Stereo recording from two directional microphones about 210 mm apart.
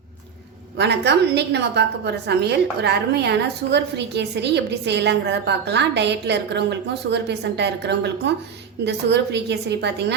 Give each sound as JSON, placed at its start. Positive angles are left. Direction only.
{"t": 0.8, "sound": "a woman's voice", "side_deg": -55}